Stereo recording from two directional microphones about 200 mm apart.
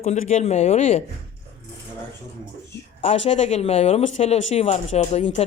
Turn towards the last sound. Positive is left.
turn(degrees=30)  # may be behind; listen again after turning